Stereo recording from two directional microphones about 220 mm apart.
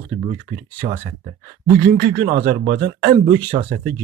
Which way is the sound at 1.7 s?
40° right (ahead or behind).